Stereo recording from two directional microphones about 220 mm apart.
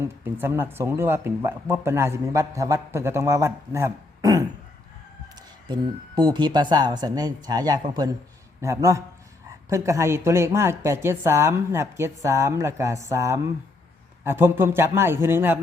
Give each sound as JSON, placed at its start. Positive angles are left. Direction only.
{"t": 0.0, "sound": "speech", "side_deg": -10}
{"t": 5.6, "sound": "speech", "side_deg": -20}